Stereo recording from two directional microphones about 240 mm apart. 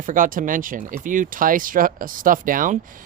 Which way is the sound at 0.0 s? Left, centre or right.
Right.